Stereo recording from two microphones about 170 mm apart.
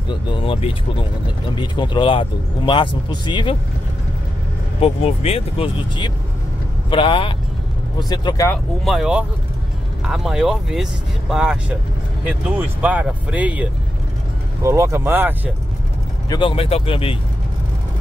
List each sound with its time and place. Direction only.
0.1 s speech: 30° left (ahead or behind)
4.7 s speech: 35° left (ahead or behind)
8.8 s speech: 5° right (ahead or behind)
16.3 s speech: 30° left (ahead or behind)